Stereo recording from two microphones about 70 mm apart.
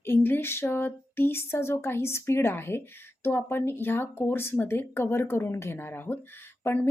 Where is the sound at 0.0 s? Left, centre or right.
Left.